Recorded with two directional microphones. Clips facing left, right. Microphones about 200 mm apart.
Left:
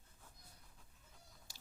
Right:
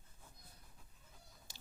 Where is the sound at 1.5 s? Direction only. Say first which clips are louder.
Right 4 dB; 25° right (ahead or behind).